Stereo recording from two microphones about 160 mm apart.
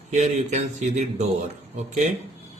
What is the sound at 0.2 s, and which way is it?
A man's voice, 45° right (ahead or behind).